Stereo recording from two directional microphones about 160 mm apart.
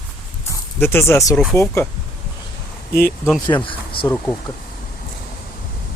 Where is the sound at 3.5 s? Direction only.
30° left (ahead or behind).